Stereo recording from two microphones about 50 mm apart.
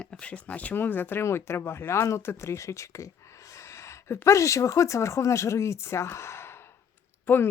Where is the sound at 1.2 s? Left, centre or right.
Left.